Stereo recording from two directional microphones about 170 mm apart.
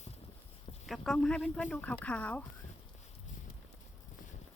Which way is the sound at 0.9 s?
Centre (ahead or behind).